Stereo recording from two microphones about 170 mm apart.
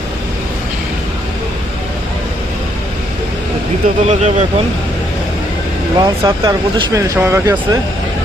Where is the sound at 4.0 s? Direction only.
40° right (ahead or behind).